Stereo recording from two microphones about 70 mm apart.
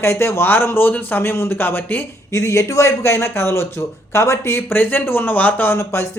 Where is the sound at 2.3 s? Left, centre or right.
Left.